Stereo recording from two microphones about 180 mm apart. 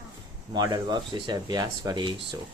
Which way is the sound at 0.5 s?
25° right (ahead or behind).